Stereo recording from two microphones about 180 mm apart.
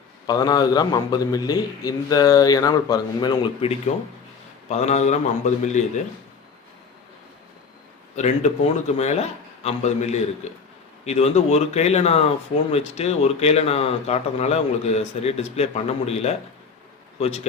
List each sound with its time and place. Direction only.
0.3 s a man's voice: 20° left (ahead or behind); by 5.9 s 45° left (ahead or behind)
8.1 s speech: 40° left (ahead or behind)